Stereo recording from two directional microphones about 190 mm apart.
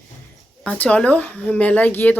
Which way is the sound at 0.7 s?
5° left (ahead or behind).